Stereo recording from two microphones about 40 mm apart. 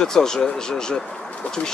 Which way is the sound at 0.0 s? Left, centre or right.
Centre.